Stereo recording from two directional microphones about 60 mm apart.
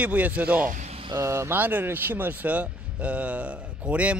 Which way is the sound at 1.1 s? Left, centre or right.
Right.